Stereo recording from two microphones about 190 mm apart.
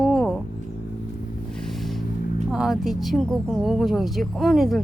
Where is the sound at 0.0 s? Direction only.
5° left (ahead or behind).